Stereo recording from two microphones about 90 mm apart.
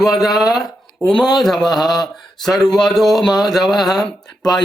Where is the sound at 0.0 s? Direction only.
Centre (ahead or behind).